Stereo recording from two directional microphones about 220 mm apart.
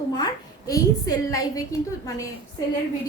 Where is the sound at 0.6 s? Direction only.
15° left (ahead or behind).